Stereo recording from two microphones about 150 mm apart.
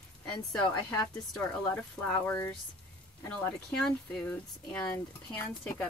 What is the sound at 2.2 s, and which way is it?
Speech, 15° left (ahead or behind).